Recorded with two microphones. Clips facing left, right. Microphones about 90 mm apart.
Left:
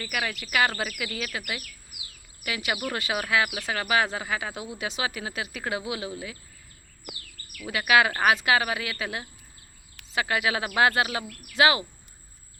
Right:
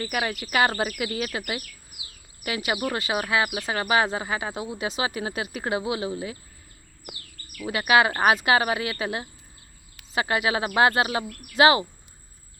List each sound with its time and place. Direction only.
0.0 s speech: 30° right (ahead or behind)
3.3 s speech: 25° right (ahead or behind)
7.6 s speech: 30° right (ahead or behind)